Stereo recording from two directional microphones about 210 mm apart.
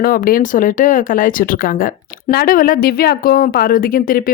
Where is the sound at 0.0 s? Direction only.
45° left (ahead or behind).